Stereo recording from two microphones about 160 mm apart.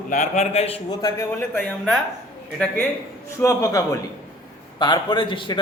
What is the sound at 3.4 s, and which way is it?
A man's voice, 20° left (ahead or behind).